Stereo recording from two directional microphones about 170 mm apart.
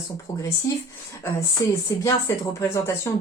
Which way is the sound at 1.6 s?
20° left (ahead or behind).